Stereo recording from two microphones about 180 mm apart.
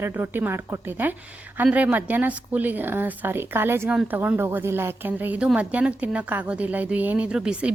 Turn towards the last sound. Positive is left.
turn(degrees=-5)  # may be behind; listen again after turning